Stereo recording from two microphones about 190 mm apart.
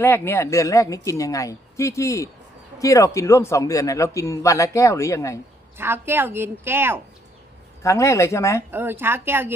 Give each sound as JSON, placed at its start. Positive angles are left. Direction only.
{"t": 0.0, "sound": "a man's voice", "side_deg": 10}
{"t": 5.8, "sound": "a woman's voice", "side_deg": -10}
{"t": 7.8, "sound": "a man's voice", "side_deg": 15}
{"t": 8.7, "sound": "a woman's voice", "side_deg": -10}